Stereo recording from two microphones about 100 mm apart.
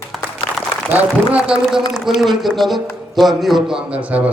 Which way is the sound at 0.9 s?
10° right (ahead or behind).